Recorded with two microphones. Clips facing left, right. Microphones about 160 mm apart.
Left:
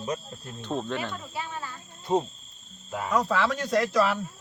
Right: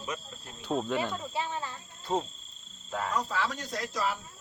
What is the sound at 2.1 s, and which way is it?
Cricket, 20° left (ahead or behind).